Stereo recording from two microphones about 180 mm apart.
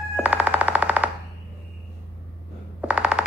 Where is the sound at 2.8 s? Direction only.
5° right (ahead or behind).